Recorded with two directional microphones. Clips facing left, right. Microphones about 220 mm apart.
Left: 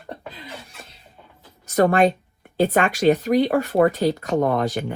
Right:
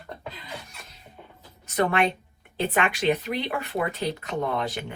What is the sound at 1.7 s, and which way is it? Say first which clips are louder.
Speech: left 7 dB; 45° left (ahead or behind).